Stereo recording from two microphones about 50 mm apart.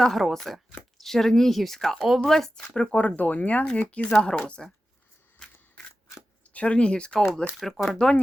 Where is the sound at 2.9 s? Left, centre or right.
Left.